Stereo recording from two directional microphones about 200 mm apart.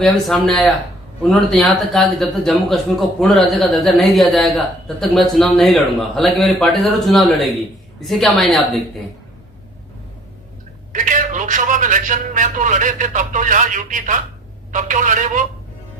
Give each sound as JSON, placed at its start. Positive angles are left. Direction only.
{"t": 0.0, "sound": "a man's voice", "side_deg": 0}
{"t": 10.9, "sound": "a man's voice", "side_deg": -40}